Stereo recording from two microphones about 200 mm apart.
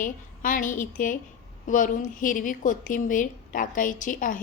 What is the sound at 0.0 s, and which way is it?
A woman's voice, 40° left (ahead or behind).